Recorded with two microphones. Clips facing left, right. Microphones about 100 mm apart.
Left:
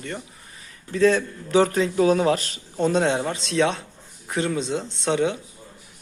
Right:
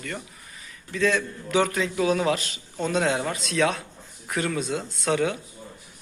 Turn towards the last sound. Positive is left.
turn(degrees=25)  # may be behind; listen again after turning